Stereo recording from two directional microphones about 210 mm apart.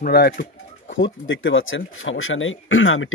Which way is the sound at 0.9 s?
65° left (ahead or behind).